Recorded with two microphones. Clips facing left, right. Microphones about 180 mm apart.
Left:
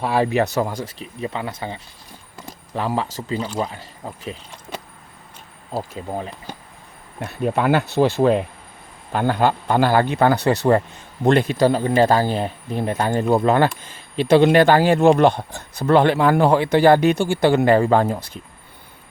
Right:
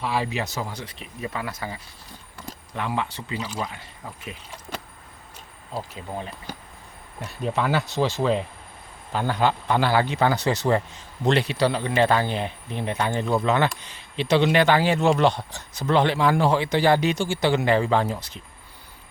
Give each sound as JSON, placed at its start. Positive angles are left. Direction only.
{"t": 0.0, "sound": "speech", "side_deg": 50}
{"t": 1.2, "sound": "speech", "side_deg": 25}
{"t": 5.9, "sound": "speech", "side_deg": 40}
{"t": 7.2, "sound": "speech", "side_deg": 55}